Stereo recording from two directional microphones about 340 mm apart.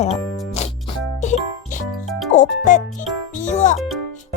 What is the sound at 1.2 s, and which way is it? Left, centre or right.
Music, left.